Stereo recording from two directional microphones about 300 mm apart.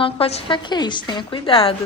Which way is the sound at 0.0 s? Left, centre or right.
Centre.